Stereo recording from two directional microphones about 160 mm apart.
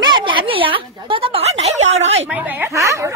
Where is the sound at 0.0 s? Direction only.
30° right (ahead or behind).